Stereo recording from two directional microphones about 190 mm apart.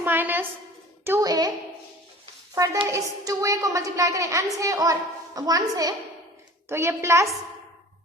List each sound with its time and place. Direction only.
0.0 s a sound: 10° right (ahead or behind)
1.0 s a woman's voice: 15° right (ahead or behind)
2.8 s a woman's voice: 15° right (ahead or behind)